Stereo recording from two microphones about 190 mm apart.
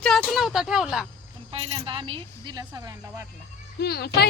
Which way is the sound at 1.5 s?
30° right (ahead or behind).